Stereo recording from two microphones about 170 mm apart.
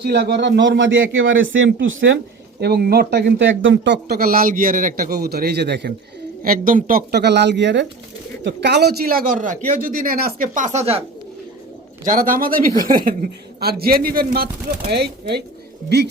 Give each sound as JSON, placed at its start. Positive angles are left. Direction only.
{"t": 0.0, "sound": "speech", "side_deg": -75}
{"t": 2.6, "sound": "speech", "side_deg": -70}
{"t": 6.4, "sound": "speech", "side_deg": -55}
{"t": 8.4, "sound": "speech", "side_deg": -75}
{"t": 12.0, "sound": "speech", "side_deg": -55}